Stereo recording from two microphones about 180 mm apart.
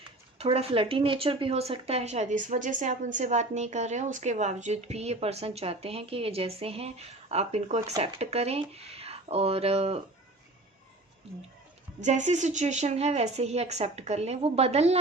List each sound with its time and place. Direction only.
0.3 s speech: 35° right (ahead or behind)
11.9 s speech: 40° right (ahead or behind)